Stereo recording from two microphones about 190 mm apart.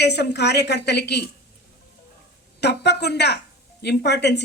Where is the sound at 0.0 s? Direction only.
60° left (ahead or behind).